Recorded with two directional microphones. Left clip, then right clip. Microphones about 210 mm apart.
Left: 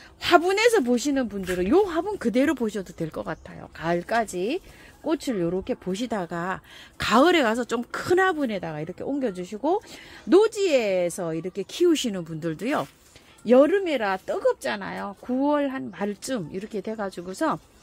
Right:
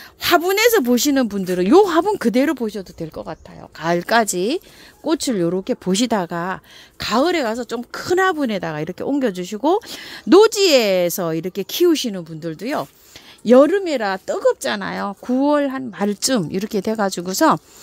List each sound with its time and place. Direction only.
0.2 s speech: 30° right (ahead or behind); by 3.3 s 10° right (ahead or behind)
3.8 s speech: 35° right (ahead or behind)
4.1 s speech: 50° right (ahead or behind); by 6.6 s 30° right (ahead or behind)
7.0 s speech: 10° right (ahead or behind); by 11.9 s 35° right (ahead or behind)
11.9 s speech: 20° right (ahead or behind)
13.5 s speech: 45° right (ahead or behind)